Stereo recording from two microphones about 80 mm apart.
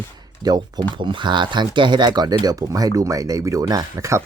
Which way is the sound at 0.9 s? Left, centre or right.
Right.